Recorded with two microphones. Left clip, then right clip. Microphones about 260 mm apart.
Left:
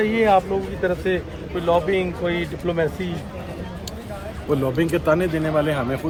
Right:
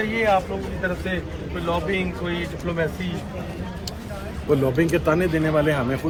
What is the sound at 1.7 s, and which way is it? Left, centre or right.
Speech, left.